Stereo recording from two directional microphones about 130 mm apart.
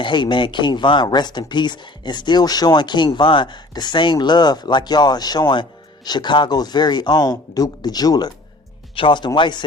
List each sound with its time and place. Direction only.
0.0 s speech: 35° left (ahead or behind)